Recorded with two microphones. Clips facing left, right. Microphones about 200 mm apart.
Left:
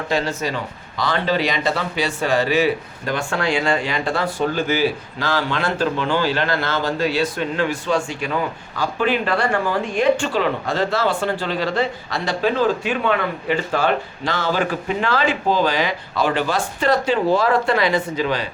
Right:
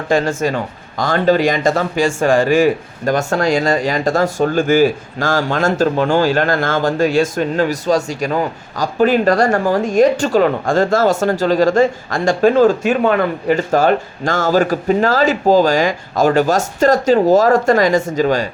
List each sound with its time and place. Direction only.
0.1 s speech: 50° right (ahead or behind)